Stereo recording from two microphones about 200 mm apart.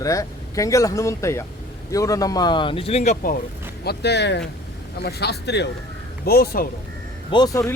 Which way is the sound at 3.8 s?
55° left (ahead or behind).